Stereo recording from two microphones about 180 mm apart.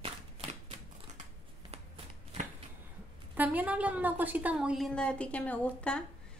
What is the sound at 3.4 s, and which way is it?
A woman's voice, 10° right (ahead or behind).